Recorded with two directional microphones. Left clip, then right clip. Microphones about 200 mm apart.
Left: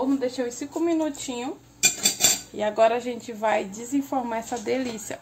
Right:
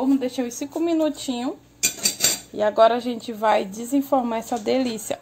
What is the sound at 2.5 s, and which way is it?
A woman's voice, 35° right (ahead or behind).